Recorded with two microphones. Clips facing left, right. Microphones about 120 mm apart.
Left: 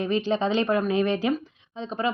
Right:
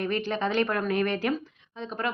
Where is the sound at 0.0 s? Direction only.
20° left (ahead or behind).